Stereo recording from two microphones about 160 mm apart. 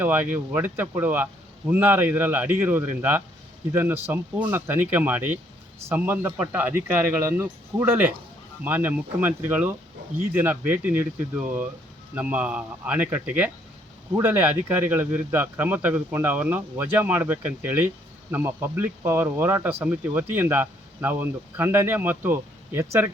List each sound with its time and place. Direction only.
0.0 s speech: 10° right (ahead or behind)